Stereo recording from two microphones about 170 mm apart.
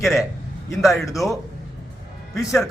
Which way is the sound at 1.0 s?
20° left (ahead or behind).